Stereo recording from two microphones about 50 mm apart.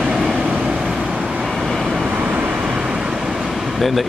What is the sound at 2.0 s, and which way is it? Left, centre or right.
Vehicle, right.